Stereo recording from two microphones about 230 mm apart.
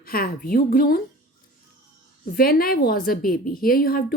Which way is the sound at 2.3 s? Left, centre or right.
Left.